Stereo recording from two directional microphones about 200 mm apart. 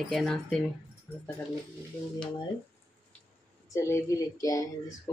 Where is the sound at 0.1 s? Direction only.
Centre (ahead or behind).